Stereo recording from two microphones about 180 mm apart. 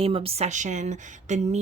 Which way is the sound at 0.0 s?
30° right (ahead or behind).